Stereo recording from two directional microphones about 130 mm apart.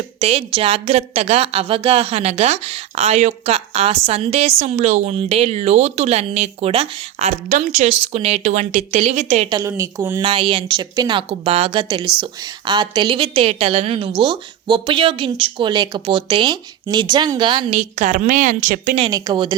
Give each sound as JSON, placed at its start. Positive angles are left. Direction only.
{"t": 0.2, "sound": "a woman's voice", "side_deg": -50}
{"t": 9.6, "sound": "a woman's voice", "side_deg": -20}
{"t": 10.2, "sound": "speech", "side_deg": -45}
{"t": 17.7, "sound": "a woman's voice", "side_deg": -55}
{"t": 19.1, "sound": "speech", "side_deg": -35}